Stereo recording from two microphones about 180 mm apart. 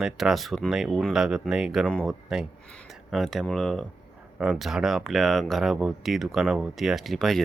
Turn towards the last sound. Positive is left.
turn(degrees=0)  # may be behind; listen again after turning